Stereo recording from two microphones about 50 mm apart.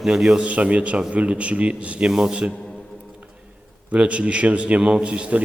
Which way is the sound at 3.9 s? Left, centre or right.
Right.